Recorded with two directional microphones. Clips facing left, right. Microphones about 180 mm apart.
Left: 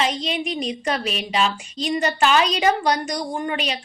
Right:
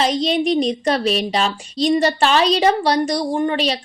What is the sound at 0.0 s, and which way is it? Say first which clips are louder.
A woman's voice: right 6 dB; 35° right (ahead or behind).